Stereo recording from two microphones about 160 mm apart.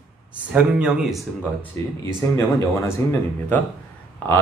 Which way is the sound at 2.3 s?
15° left (ahead or behind).